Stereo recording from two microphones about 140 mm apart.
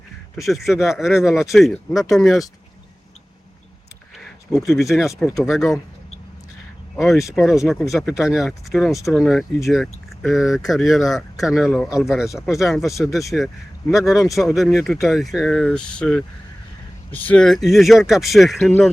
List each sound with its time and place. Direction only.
0.4 s speech: centre (ahead or behind)
4.2 s speech: centre (ahead or behind)
6.9 s speech: centre (ahead or behind)
7.2 s speech: 20° left (ahead or behind)
7.4 s speech: centre (ahead or behind)